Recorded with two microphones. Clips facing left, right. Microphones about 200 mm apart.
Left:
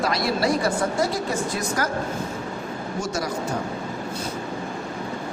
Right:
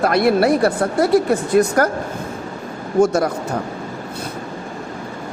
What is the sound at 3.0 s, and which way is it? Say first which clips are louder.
Speech: right 13 dB; 55° right (ahead or behind).